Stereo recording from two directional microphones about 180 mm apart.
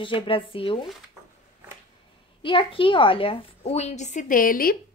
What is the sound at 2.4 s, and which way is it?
A woman's voice, 30° left (ahead or behind).